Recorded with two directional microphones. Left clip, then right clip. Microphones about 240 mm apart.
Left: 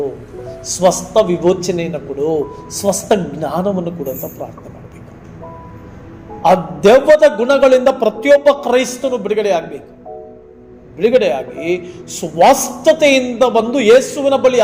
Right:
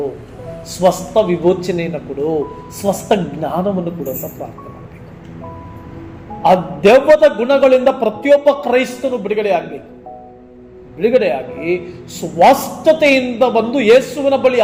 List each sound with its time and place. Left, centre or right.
0.7 s a man's voice: left
6.4 s a man's voice: left
11.0 s a man's voice: left